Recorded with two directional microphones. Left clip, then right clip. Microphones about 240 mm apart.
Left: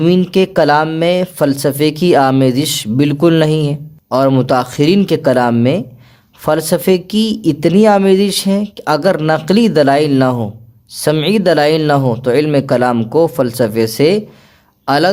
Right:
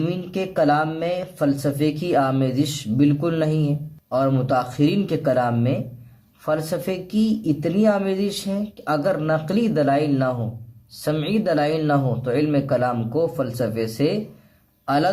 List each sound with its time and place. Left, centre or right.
0.0 s a man's voice: left